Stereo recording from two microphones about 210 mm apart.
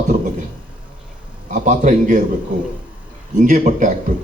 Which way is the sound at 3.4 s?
35° right (ahead or behind).